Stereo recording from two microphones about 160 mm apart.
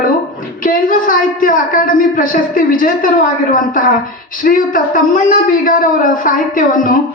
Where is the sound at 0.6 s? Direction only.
55° left (ahead or behind).